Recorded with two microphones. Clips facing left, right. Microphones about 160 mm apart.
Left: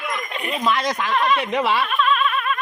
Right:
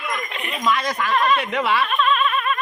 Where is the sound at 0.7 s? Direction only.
25° left (ahead or behind).